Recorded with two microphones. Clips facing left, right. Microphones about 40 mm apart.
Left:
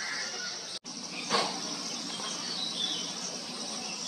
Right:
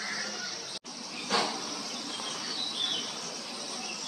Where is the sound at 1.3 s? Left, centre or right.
Centre.